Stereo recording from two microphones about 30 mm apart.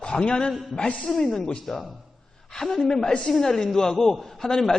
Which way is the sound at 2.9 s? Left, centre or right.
Left.